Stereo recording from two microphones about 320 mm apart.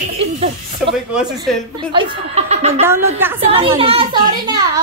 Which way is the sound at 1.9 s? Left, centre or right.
Centre.